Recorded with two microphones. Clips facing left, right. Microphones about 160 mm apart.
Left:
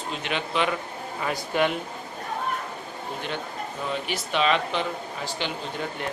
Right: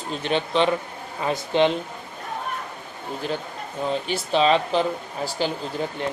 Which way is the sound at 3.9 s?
30° right (ahead or behind).